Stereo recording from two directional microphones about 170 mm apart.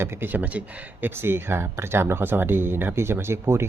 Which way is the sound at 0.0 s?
10° right (ahead or behind).